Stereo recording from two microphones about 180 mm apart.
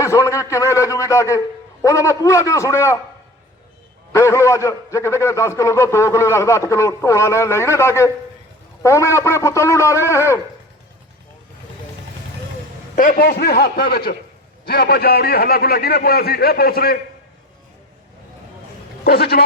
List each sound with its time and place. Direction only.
0.0 s a man's voice: 15° left (ahead or behind)
4.1 s a man's voice: 15° left (ahead or behind)
13.0 s a man's voice: 55° left (ahead or behind)
19.0 s a man's voice: 60° left (ahead or behind)